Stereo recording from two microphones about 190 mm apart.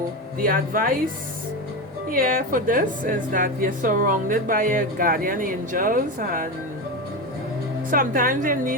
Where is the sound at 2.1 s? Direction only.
50° right (ahead or behind).